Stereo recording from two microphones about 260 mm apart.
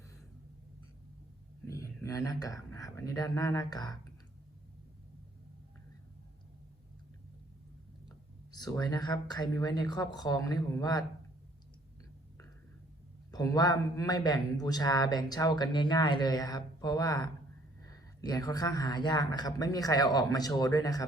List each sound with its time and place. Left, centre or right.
1.7 s a man's voice: centre
8.5 s a man's voice: centre
13.3 s a man's voice: centre